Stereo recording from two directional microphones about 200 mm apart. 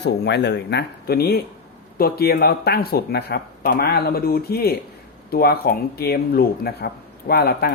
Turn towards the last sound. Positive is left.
turn(degrees=50)  # may be behind; listen again after turning